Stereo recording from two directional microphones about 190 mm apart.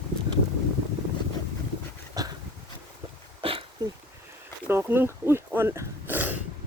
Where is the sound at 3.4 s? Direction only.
30° right (ahead or behind).